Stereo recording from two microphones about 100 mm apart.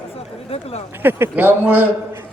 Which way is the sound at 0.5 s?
90° left.